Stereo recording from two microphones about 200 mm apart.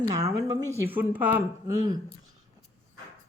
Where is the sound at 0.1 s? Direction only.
15° right (ahead or behind).